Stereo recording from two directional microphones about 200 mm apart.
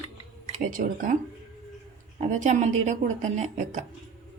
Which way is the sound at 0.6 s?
40° right (ahead or behind).